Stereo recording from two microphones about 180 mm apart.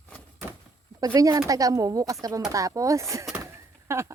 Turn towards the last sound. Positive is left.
turn(degrees=-15)  # may be behind; listen again after turning